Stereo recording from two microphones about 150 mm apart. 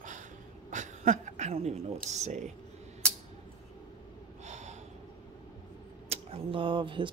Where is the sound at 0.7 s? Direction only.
55° right (ahead or behind).